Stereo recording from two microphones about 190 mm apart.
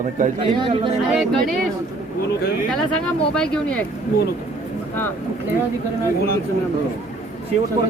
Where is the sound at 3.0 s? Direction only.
5° left (ahead or behind).